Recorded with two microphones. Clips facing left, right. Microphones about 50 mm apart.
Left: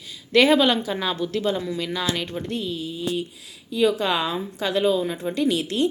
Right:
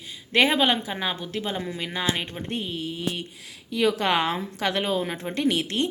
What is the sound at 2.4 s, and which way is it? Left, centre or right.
A woman's voice, right.